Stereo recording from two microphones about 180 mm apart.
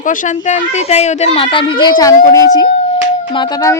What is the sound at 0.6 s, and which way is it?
A woman's voice, 35° left (ahead or behind).